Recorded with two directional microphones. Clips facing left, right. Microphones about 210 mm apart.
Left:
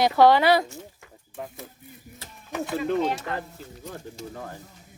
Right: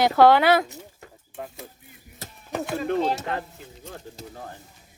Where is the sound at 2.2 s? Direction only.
35° right (ahead or behind).